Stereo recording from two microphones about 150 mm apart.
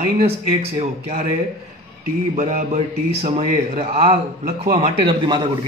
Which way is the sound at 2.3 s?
55° right (ahead or behind).